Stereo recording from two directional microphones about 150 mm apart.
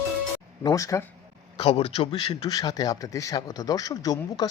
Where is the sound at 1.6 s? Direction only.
40° left (ahead or behind).